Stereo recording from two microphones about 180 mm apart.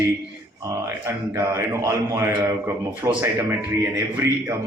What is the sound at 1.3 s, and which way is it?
A man's voice, 15° right (ahead or behind).